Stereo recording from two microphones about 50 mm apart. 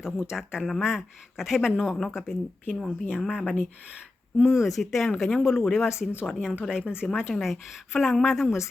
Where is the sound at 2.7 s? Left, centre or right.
Centre.